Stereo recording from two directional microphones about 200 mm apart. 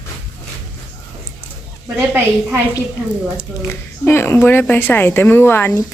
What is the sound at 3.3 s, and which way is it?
Speech, 10° left (ahead or behind).